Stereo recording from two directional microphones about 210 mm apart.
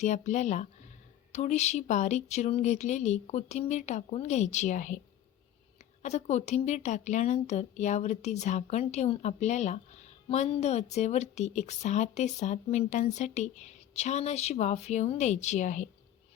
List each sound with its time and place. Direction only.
0.0 s speech: 35° left (ahead or behind)
6.0 s speech: 35° left (ahead or behind)